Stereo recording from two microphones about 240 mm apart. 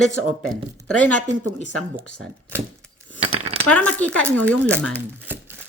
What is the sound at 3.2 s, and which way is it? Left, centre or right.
Cutlery, right.